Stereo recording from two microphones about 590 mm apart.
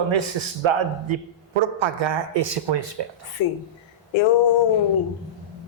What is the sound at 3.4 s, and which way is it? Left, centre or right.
Speech, left.